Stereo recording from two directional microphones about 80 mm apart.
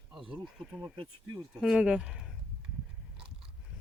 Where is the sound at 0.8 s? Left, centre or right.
Right.